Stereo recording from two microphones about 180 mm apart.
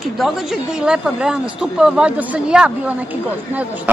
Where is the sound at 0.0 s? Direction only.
Centre (ahead or behind).